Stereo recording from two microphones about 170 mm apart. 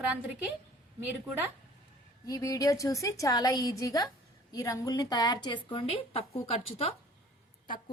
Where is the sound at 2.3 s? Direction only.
20° left (ahead or behind); by 6.9 s 35° left (ahead or behind).